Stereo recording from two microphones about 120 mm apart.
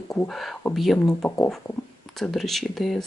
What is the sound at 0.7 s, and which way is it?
Speech, 5° left (ahead or behind).